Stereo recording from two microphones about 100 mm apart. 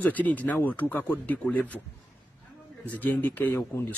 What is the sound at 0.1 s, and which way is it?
A man's voice, 15° left (ahead or behind).